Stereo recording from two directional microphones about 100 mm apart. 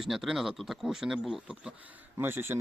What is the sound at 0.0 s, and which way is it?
Speech, 5° right (ahead or behind).